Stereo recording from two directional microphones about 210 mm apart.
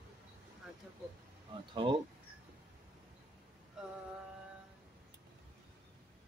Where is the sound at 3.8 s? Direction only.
5° right (ahead or behind).